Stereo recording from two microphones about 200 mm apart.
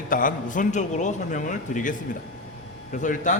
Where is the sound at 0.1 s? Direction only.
40° left (ahead or behind).